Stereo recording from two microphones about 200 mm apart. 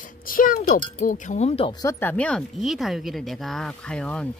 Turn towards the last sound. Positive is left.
turn(degrees=5)  # may be behind; listen again after turning